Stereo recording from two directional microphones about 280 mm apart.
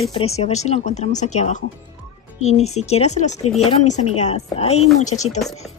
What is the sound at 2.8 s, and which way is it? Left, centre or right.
Speech, left.